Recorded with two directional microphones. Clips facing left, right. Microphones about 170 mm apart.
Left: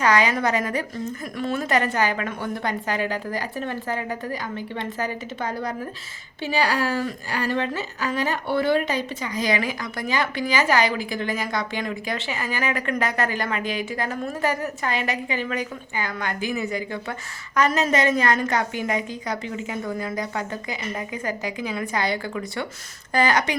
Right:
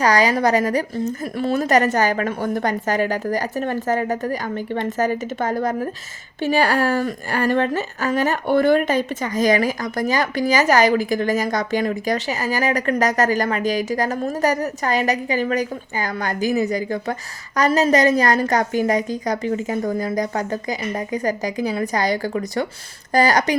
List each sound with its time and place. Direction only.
0.0 s a woman's voice: 35° right (ahead or behind)